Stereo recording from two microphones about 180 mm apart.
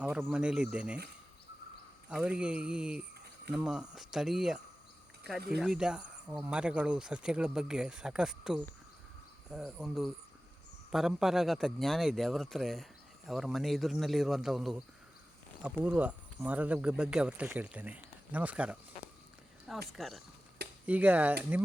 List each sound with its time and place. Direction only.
0.0 s a man's voice: 10° right (ahead or behind)
2.0 s a man's voice: 5° right (ahead or behind)
19.9 s a man's voice: centre (ahead or behind)